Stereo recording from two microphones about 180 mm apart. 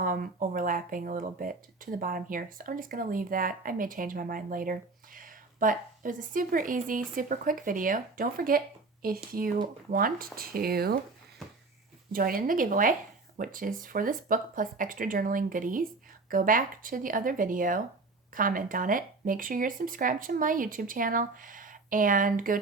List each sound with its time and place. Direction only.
0.0 s speech: 50° right (ahead or behind)
12.1 s speech: 50° right (ahead or behind)